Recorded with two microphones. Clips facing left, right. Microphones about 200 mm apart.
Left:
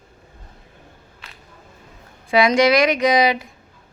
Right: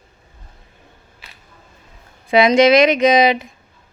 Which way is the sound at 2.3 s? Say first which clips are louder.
Right 4 dB; 20° right (ahead or behind).